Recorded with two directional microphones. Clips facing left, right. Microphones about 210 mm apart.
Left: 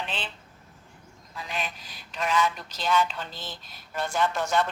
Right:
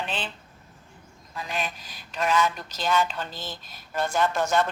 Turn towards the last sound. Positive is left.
turn(degrees=-45)  # may be behind; listen again after turning